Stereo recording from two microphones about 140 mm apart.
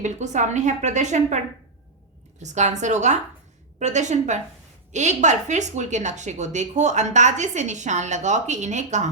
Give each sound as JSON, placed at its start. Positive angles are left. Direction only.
{"t": 0.0, "sound": "a woman's voice", "side_deg": -60}
{"t": 2.4, "sound": "a woman's voice", "side_deg": -55}